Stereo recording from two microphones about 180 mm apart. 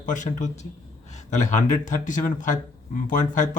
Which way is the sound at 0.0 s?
45° left (ahead or behind).